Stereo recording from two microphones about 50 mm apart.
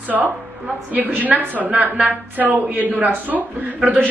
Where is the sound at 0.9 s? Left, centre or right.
Right.